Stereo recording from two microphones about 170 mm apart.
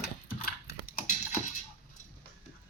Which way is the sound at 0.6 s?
55° left (ahead or behind).